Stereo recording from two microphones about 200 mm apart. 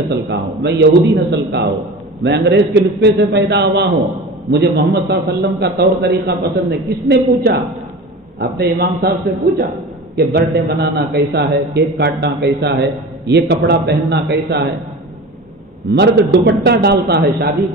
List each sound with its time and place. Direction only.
0.1 s a man's voice: 60° right (ahead or behind)
10.1 s a man's voice: 55° right (ahead or behind)
15.9 s a man's voice: 55° right (ahead or behind)